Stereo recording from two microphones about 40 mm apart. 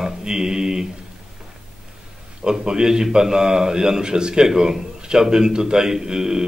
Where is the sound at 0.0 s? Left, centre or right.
Centre.